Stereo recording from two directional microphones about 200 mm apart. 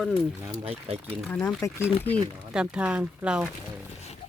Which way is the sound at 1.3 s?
5° left (ahead or behind).